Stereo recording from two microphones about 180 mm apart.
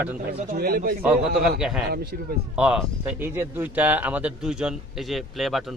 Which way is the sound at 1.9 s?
60° right (ahead or behind).